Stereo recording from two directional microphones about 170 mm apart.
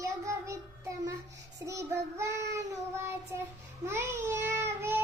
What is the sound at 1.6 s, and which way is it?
Child singing, 15° right (ahead or behind).